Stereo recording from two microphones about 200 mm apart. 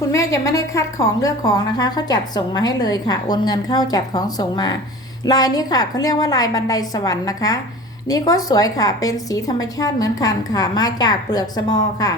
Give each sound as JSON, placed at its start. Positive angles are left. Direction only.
{"t": 0.1, "sound": "a woman's voice", "side_deg": 15}